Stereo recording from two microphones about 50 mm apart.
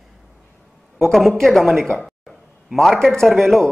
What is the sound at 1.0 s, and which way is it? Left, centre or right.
Speech, centre.